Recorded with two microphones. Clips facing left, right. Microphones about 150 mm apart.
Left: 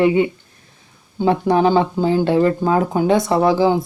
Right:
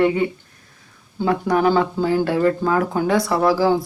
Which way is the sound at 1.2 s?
25° left (ahead or behind).